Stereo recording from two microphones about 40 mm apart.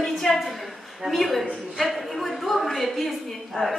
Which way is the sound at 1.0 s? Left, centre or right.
Centre.